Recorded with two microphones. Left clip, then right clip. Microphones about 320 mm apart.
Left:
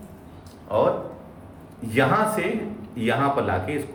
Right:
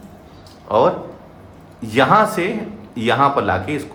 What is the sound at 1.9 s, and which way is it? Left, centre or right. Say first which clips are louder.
A man's voice: right 7 dB; centre.